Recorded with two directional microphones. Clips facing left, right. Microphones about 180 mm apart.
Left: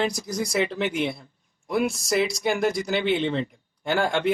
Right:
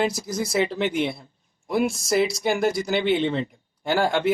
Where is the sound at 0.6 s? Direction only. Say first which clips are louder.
Right 2 dB; 35° right (ahead or behind).